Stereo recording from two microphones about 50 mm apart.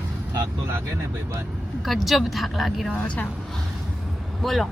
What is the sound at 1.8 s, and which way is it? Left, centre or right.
Speech, centre.